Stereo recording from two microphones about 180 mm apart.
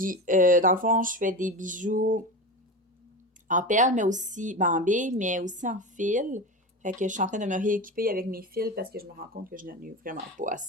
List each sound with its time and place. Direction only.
0.0 s speech: 50° right (ahead or behind)
3.5 s speech: 45° right (ahead or behind)